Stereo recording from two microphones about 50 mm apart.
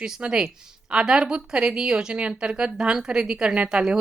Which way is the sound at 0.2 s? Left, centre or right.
Centre.